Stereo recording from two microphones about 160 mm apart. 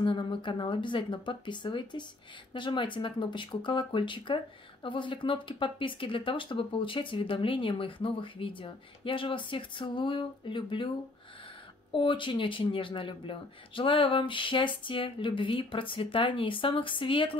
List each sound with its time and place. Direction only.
0.0 s speech: 30° left (ahead or behind)
11.9 s speech: 30° left (ahead or behind)